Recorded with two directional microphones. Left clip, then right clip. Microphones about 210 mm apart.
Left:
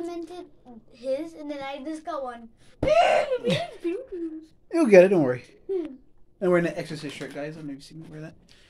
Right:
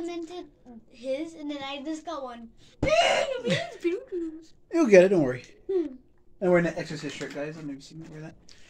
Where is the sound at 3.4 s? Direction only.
15° left (ahead or behind).